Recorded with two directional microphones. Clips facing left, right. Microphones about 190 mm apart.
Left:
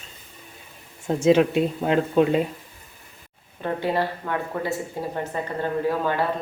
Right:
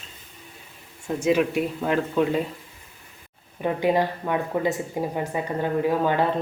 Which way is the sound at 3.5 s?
15° right (ahead or behind).